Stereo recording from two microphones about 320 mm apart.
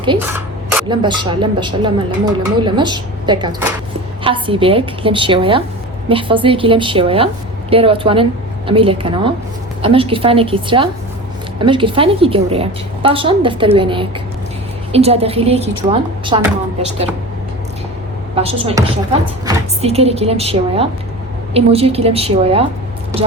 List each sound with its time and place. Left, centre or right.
0.0 s a sound: centre
0.9 s a woman's voice: centre
18.3 s a woman's voice: centre